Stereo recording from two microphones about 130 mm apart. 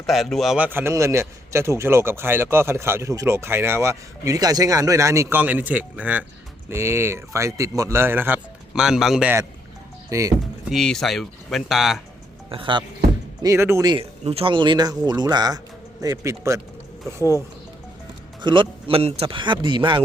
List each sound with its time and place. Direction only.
0.0 s speech: centre (ahead or behind)
0.6 s a man's voice: 15° right (ahead or behind)
8.7 s speech: 5° right (ahead or behind)
10.1 s speech: 25° right (ahead or behind)
10.7 s speech: centre (ahead or behind)
12.5 s speech: 40° right (ahead or behind)
13.4 s a man's voice: 20° right (ahead or behind)
13.8 s a man's voice: 40° right (ahead or behind); by 17.3 s 20° right (ahead or behind)
18.4 s speech: 40° right (ahead or behind)